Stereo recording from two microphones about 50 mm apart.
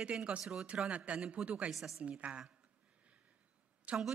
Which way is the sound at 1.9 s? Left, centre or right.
Right.